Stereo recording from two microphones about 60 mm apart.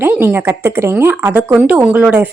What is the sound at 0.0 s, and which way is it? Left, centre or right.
Speech, right.